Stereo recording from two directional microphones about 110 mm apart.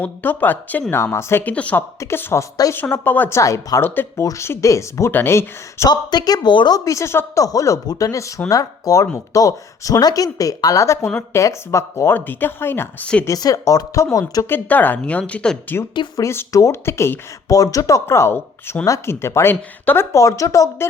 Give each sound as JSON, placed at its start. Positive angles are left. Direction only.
{"t": 0.0, "sound": "speech", "side_deg": 15}
{"t": 2.0, "sound": "speech", "side_deg": 25}
{"t": 5.9, "sound": "speech", "side_deg": 40}
{"t": 6.7, "sound": "speech", "side_deg": 30}
{"t": 13.2, "sound": "speech", "side_deg": 35}
{"t": 14.5, "sound": "speech", "side_deg": 15}
{"t": 16.1, "sound": "speech", "side_deg": 25}
{"t": 20.1, "sound": "speech", "side_deg": 30}